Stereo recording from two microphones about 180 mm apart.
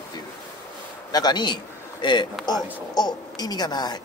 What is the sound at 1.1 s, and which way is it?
A woman's voice, 25° left (ahead or behind).